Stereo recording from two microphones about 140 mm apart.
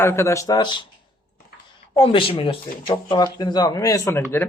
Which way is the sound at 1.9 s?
40° left (ahead or behind).